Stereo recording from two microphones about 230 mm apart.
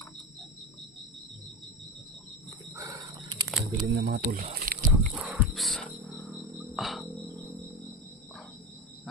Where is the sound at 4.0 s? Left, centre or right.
Right.